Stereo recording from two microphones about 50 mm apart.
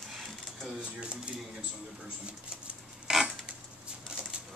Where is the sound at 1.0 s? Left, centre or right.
Centre.